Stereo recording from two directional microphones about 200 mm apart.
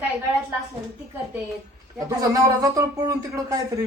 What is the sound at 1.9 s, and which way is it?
Speech, 15° right (ahead or behind).